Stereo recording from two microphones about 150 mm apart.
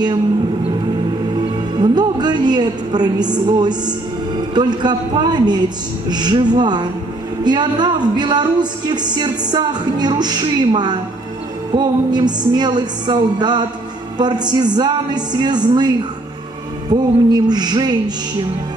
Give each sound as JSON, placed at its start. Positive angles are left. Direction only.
{"t": 1.8, "sound": "speech", "side_deg": -30}